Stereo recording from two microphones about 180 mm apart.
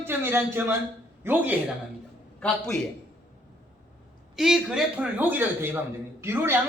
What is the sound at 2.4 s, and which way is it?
Speech, 5° left (ahead or behind).